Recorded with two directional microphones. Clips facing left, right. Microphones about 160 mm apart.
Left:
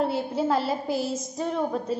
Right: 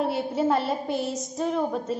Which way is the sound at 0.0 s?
Centre (ahead or behind).